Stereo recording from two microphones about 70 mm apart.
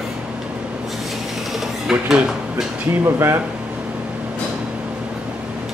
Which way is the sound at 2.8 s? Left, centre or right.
Right.